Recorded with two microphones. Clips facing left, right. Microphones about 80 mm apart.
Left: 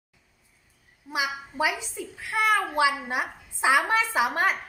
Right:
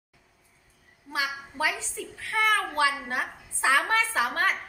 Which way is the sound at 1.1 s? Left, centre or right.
Centre.